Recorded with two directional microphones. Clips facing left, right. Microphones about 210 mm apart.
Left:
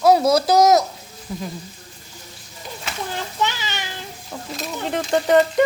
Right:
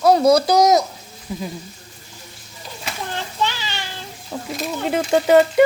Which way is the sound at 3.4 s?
20° left (ahead or behind).